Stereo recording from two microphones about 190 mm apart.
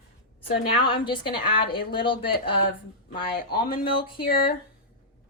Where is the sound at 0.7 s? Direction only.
25° left (ahead or behind).